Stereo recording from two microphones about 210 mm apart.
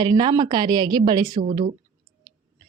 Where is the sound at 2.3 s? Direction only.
20° right (ahead or behind).